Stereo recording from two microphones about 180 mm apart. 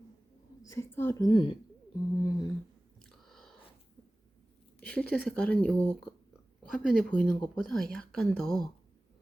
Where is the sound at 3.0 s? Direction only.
5° left (ahead or behind).